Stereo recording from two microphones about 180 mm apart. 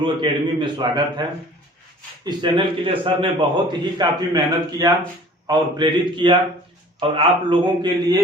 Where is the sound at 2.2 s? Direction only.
25° right (ahead or behind).